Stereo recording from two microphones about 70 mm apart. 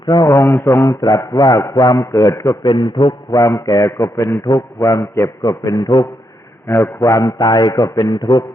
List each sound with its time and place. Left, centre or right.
0.0 s mantra: left
0.3 s a man's voice: left
0.9 s a man's voice: left
2.0 s a man's voice: left
2.9 s a sound: left
3.4 s a man's voice: left
5.4 s a man's voice: left